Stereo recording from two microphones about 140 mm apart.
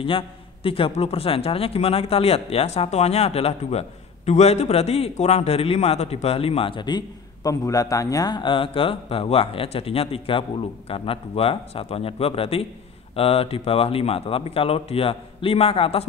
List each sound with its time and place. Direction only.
0.7 s a man's voice: 40° left (ahead or behind)